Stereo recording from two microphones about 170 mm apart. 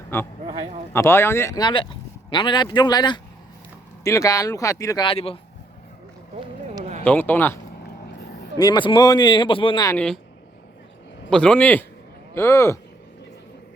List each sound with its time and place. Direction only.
0.1 s speech: 15° left (ahead or behind)
5.0 s speech: 35° left (ahead or behind)
7.0 s speech: 10° left (ahead or behind)
8.5 s speech: 25° left (ahead or behind)
9.9 s speech: 5° left (ahead or behind)
11.3 s speech: 5° left (ahead or behind)